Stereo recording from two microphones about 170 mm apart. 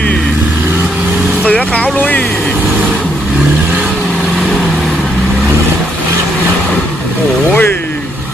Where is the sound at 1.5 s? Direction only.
10° left (ahead or behind).